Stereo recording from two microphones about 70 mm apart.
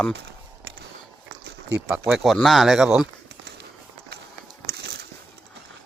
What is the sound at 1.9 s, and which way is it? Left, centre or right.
Speech, centre.